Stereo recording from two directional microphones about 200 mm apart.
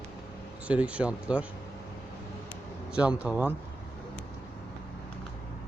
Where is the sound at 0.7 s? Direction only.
5° right (ahead or behind).